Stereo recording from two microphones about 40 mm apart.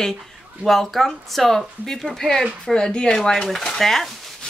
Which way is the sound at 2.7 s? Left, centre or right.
Left.